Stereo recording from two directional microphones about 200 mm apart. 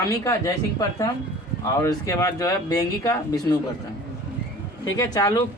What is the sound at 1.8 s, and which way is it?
Speech, 15° left (ahead or behind).